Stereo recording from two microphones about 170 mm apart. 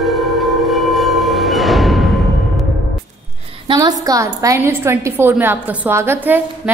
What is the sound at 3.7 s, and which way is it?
A woman's voice, 20° right (ahead or behind).